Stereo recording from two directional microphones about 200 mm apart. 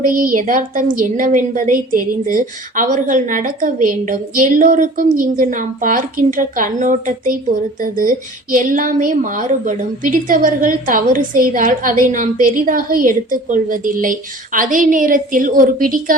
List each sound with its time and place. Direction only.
0.0 s a woman's voice: 45° right (ahead or behind)